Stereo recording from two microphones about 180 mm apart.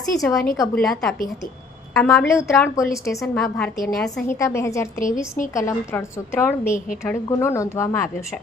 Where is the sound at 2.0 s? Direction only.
15° left (ahead or behind).